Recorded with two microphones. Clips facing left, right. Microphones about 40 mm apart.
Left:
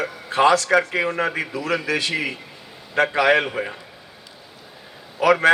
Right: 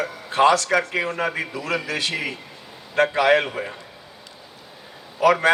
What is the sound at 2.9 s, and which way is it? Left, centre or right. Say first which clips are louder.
Speech: even; centre.